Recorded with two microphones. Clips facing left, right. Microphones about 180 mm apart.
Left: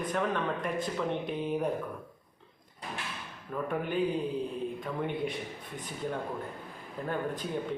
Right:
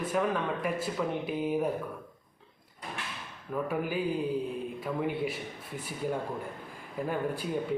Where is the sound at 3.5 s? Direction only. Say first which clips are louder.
Even; 5° right (ahead or behind).